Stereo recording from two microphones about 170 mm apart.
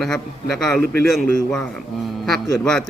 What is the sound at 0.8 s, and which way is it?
Speech, 65° right (ahead or behind).